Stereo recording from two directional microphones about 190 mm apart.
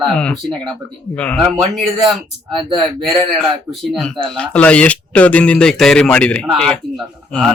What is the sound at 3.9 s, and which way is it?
Speech, 5° left (ahead or behind).